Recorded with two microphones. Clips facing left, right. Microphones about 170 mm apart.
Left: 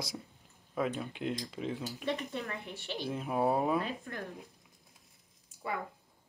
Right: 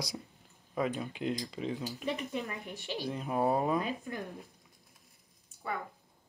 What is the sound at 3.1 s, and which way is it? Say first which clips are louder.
Speech: even; 5° left (ahead or behind).